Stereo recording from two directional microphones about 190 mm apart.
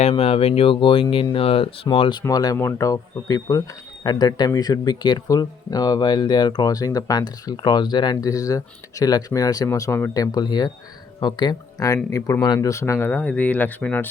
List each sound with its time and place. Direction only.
0.0 s speech: 30° left (ahead or behind); by 14.1 s 10° left (ahead or behind)